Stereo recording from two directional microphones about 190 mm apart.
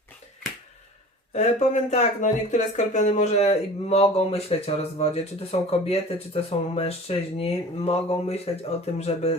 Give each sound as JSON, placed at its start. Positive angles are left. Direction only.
{"t": 1.3, "sound": "speech", "side_deg": 35}